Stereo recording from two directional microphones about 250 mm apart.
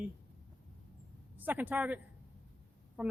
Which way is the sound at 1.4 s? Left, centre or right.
Centre.